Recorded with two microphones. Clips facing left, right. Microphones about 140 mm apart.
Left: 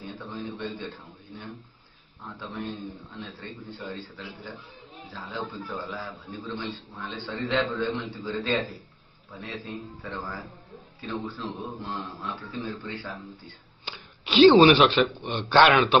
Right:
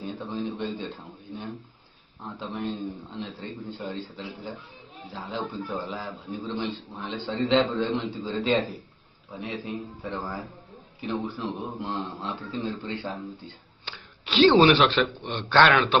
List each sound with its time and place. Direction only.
0.0 s a sound: 20° right (ahead or behind)
2.4 s a man's voice: 20° right (ahead or behind)
13.8 s wail: 15° left (ahead or behind)
14.6 s a man's voice: 5° left (ahead or behind)